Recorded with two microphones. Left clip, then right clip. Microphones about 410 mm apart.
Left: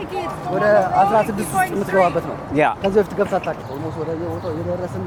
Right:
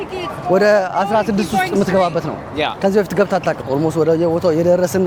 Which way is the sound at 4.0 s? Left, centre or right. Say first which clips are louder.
Right 11 dB; right.